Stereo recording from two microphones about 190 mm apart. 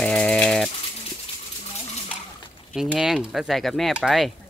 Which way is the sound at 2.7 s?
Centre (ahead or behind).